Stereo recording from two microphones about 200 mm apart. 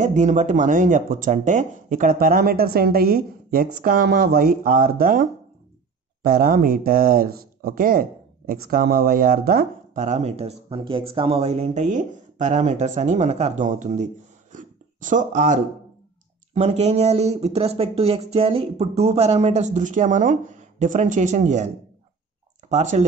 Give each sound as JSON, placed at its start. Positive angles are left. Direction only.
{"t": 0.0, "sound": "speech", "side_deg": -35}
{"t": 6.2, "sound": "speech", "side_deg": -45}
{"t": 22.7, "sound": "speech", "side_deg": -35}